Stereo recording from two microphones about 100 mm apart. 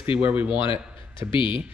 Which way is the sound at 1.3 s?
55° left (ahead or behind).